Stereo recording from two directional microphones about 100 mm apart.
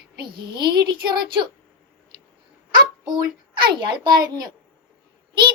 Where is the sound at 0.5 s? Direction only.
50° right (ahead or behind).